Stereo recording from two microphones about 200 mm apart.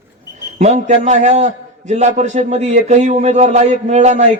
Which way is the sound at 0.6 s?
35° right (ahead or behind).